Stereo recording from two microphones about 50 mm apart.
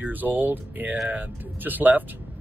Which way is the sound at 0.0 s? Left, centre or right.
Right.